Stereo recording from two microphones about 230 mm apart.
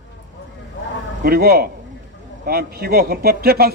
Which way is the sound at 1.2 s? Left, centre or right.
Right.